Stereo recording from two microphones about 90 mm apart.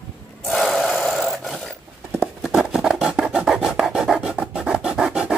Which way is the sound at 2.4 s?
5° right (ahead or behind).